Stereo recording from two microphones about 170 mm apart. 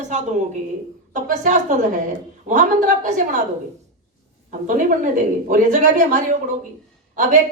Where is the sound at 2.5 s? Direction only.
50° right (ahead or behind).